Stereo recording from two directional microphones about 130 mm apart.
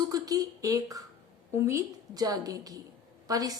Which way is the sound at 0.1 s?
30° right (ahead or behind).